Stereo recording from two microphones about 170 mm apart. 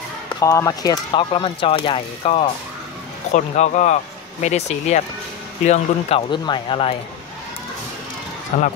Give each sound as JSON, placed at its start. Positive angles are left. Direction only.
{"t": 0.4, "sound": "speech", "side_deg": 20}
{"t": 3.3, "sound": "speech", "side_deg": 45}